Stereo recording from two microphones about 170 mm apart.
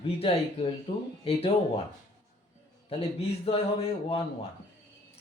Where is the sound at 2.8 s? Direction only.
35° left (ahead or behind).